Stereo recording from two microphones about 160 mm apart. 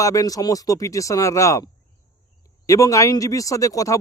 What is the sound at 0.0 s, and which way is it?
Speech, 20° left (ahead or behind).